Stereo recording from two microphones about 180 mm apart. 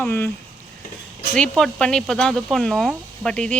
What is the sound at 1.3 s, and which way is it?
Speech, 5° left (ahead or behind).